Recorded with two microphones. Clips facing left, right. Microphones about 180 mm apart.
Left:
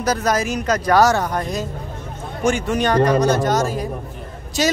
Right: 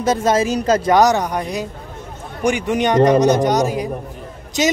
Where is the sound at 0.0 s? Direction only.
25° right (ahead or behind).